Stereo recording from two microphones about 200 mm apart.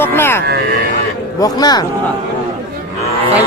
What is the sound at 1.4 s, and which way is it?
Speech, 20° left (ahead or behind).